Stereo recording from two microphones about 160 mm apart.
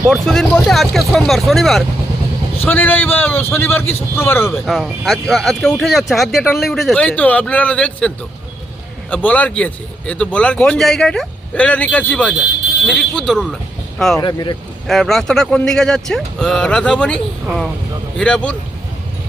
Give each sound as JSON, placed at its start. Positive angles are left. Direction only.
{"t": 0.1, "sound": "speech", "side_deg": 5}
{"t": 2.6, "sound": "a man's voice", "side_deg": 10}
{"t": 4.6, "sound": "a man's voice", "side_deg": 0}
{"t": 14.2, "sound": "speech", "side_deg": 25}
{"t": 14.8, "sound": "speech", "side_deg": 0}